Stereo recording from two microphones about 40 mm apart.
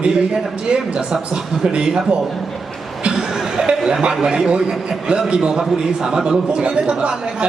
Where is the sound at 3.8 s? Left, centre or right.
Right.